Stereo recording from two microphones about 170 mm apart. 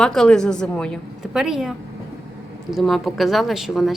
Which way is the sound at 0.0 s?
5° left (ahead or behind).